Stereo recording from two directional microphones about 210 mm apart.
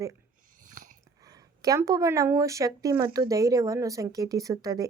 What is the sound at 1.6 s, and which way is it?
Speech, 15° right (ahead or behind).